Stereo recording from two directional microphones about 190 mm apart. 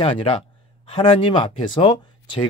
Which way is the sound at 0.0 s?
30° left (ahead or behind).